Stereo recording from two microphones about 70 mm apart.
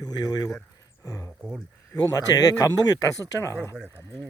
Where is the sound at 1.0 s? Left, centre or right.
Left.